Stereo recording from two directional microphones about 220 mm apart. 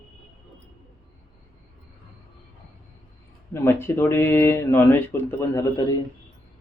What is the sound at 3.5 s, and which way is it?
Speech, 10° left (ahead or behind).